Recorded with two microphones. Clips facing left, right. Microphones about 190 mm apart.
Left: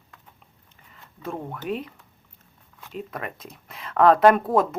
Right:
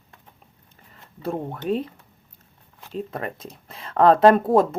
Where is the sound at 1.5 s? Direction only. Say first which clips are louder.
Right 5 dB; 30° right (ahead or behind).